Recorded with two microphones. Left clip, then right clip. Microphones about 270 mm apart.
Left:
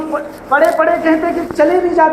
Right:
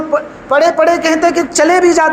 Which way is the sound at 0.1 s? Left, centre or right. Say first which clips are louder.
Right 2 dB; right.